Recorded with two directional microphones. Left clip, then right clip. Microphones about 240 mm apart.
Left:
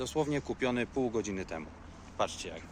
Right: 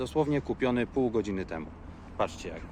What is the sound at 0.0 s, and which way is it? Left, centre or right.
Speech, centre.